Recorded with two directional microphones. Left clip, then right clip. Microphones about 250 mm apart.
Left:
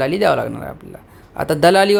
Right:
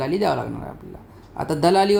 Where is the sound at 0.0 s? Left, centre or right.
Centre.